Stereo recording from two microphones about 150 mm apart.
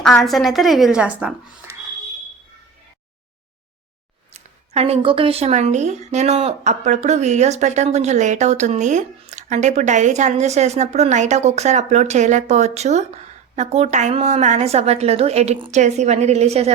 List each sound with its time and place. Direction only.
0.0 s a woman's voice: centre (ahead or behind)
4.4 s speech: 45° right (ahead or behind)
15.7 s speech: 50° right (ahead or behind)